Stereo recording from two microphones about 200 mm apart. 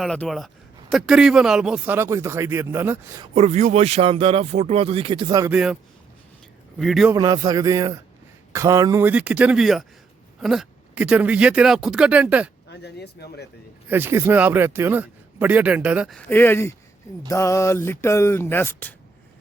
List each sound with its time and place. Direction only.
0.0 s a man's voice: centre (ahead or behind); by 3.2 s 15° right (ahead or behind)
3.3 s speech: 35° right (ahead or behind)
5.5 s a man's voice: 5° right (ahead or behind)
6.7 s a man's voice: centre (ahead or behind)
7.1 s a man's voice: 20° right (ahead or behind)
12.6 s speech: 55° left (ahead or behind)
13.9 s speech: 10° right (ahead or behind)
16.1 s a sound: 10° left (ahead or behind)